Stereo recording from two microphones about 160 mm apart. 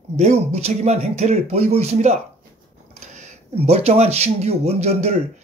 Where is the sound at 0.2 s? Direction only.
40° right (ahead or behind).